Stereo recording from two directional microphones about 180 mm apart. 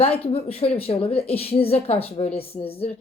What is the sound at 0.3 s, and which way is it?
A woman's voice, 30° left (ahead or behind).